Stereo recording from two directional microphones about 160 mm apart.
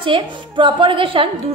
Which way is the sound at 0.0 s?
30° right (ahead or behind).